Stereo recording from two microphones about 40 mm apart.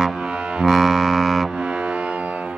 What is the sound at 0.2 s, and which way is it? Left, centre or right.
Music, right.